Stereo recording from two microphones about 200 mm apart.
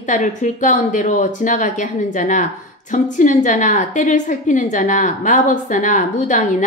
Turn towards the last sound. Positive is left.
turn(degrees=40)  # may be behind; listen again after turning